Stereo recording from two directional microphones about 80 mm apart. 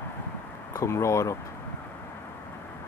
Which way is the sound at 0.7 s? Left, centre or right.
Left.